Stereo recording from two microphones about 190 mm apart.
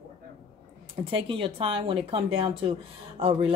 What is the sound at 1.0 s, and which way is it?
Speech, 30° right (ahead or behind).